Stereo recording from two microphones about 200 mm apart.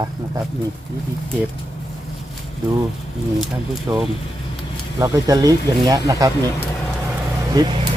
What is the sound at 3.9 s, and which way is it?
Speech, 15° right (ahead or behind).